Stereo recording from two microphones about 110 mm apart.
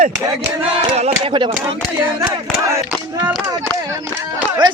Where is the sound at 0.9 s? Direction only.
70° right (ahead or behind).